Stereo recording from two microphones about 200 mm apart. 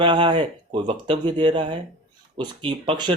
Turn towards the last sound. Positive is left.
turn(degrees=-25)  # may be behind; listen again after turning